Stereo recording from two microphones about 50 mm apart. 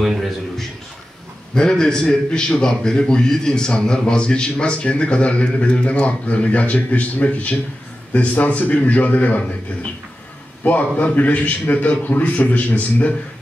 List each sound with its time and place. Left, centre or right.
0.0 s a sound: centre
1.5 s a man's voice: centre; by 9.4 s left
10.6 s a man's voice: left